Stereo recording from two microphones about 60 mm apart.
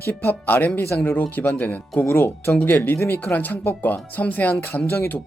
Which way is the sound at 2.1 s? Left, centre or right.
Left.